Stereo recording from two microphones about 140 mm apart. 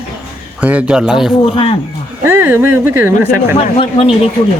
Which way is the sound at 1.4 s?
40° left (ahead or behind).